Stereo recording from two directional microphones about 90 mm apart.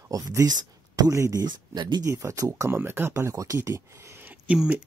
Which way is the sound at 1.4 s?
55° right (ahead or behind).